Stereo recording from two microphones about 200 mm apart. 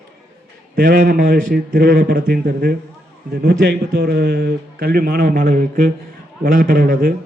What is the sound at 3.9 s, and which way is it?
A man's voice, 55° right (ahead or behind).